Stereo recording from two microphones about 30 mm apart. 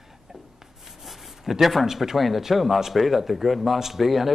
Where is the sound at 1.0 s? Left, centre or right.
Centre.